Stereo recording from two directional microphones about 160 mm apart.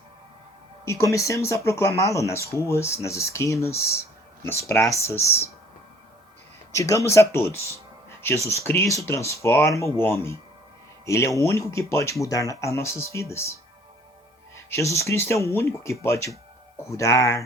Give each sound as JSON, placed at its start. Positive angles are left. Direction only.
{"t": 0.9, "sound": "speech", "side_deg": 20}
{"t": 6.7, "sound": "speech", "side_deg": 20}